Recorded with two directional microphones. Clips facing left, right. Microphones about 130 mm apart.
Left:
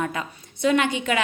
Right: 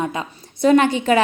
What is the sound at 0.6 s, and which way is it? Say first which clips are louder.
Speech: right 6 dB; 40° right (ahead or behind).